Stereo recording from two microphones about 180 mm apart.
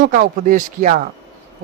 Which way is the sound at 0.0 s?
50° right (ahead or behind).